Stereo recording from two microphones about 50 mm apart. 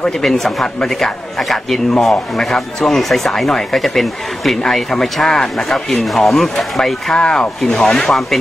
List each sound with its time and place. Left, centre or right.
0.2 s speech: centre